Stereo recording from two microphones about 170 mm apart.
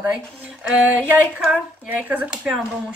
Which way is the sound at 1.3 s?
5° right (ahead or behind).